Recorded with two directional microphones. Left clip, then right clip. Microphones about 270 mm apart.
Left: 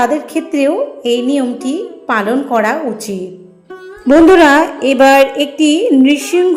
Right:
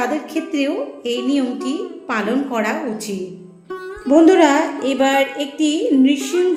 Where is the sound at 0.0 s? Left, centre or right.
Centre.